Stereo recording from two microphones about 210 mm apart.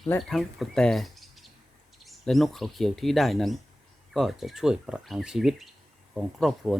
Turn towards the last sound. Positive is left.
turn(degrees=0)  # may be behind; listen again after turning